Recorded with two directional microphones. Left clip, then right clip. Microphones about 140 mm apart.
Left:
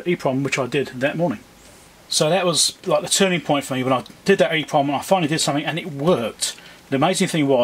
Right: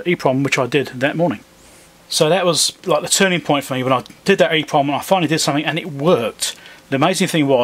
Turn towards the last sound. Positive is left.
turn(degrees=-20)  # may be behind; listen again after turning